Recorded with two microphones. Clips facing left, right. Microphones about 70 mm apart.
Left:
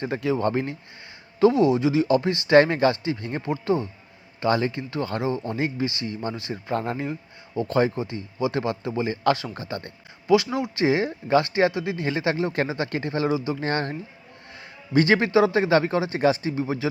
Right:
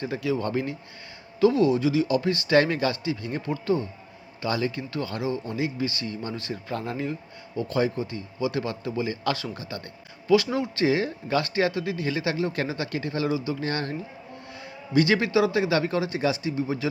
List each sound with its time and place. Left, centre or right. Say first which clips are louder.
0.0 s speech: left 3 dB; left
3.4 s speech: left 2 dB; left
4.4 s speech: left 4 dB; left
10.2 s speech: left 1 dB; left